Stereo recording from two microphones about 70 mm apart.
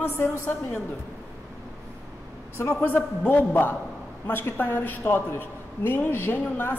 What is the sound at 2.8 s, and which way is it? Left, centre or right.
A woman's voice, left.